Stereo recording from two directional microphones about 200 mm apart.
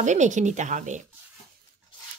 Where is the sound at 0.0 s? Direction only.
35° right (ahead or behind).